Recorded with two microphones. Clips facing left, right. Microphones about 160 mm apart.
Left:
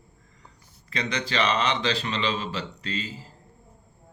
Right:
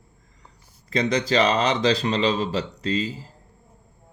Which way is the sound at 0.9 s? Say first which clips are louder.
Right 8 dB; 35° right (ahead or behind).